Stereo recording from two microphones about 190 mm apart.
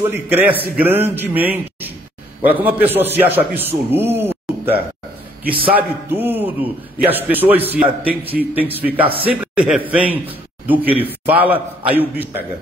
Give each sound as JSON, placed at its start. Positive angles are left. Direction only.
{"t": 0.0, "sound": "a man's voice", "side_deg": -10}
{"t": 5.4, "sound": "a man's voice", "side_deg": -50}
{"t": 5.8, "sound": "a man's voice", "side_deg": -10}